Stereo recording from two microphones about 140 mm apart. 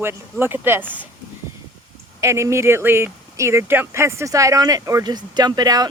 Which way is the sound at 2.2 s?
20° right (ahead or behind).